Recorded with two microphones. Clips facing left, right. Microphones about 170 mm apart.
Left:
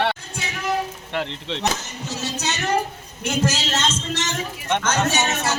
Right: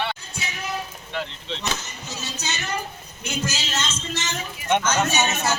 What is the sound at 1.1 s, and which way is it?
Chop, 70° left (ahead or behind).